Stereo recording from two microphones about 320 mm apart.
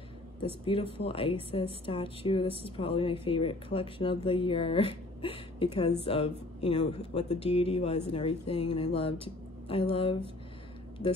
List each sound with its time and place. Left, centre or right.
0.7 s speech: centre